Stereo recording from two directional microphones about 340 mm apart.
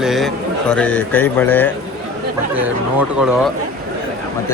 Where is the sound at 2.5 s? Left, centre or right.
Centre.